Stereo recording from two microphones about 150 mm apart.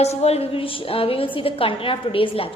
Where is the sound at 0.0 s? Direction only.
45° left (ahead or behind).